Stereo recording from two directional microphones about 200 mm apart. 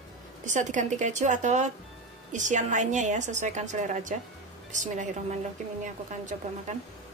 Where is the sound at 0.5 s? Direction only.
40° right (ahead or behind).